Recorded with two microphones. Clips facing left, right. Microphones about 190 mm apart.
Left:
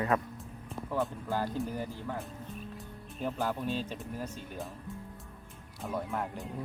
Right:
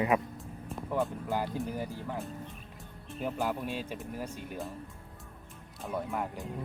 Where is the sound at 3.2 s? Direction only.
10° right (ahead or behind).